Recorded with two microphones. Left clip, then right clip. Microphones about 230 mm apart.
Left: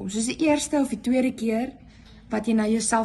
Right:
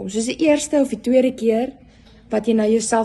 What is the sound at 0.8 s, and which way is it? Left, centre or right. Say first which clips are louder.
A woman's voice: right 8 dB; right.